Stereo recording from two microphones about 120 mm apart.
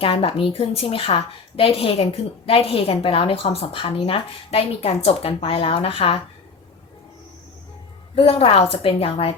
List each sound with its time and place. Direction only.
0.0 s a woman's voice: 50° left (ahead or behind)
8.1 s a woman's voice: 50° left (ahead or behind)